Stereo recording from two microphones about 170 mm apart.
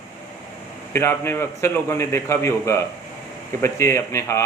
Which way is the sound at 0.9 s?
15° left (ahead or behind).